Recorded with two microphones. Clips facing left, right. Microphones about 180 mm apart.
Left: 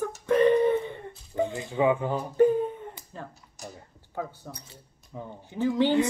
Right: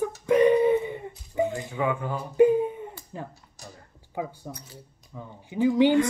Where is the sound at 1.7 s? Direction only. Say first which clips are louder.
Left 5 dB; 20° left (ahead or behind).